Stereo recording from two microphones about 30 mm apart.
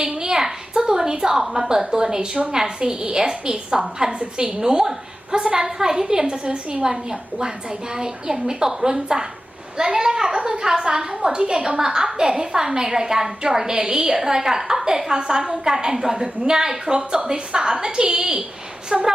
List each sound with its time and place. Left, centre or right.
0.0 s a sound: right
0.7 s a woman's voice: right
5.6 s a woman's voice: centre; by 19.1 s right